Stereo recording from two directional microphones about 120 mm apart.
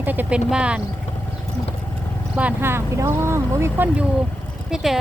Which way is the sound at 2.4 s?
15° right (ahead or behind).